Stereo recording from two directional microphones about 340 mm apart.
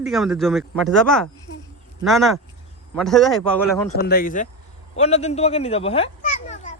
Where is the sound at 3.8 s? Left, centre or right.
Left.